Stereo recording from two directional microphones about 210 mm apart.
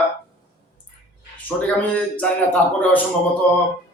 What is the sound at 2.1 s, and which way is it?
Speech, 5° left (ahead or behind).